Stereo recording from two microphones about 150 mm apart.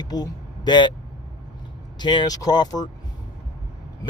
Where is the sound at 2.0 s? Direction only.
30° left (ahead or behind).